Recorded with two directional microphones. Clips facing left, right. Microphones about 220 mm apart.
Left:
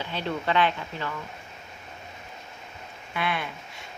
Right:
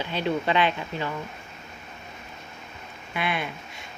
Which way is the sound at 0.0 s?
15° right (ahead or behind).